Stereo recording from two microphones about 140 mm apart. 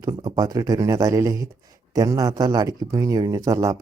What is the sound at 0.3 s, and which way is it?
Speech, 25° right (ahead or behind).